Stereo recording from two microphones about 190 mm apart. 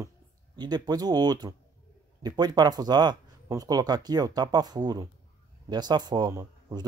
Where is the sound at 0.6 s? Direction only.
20° right (ahead or behind).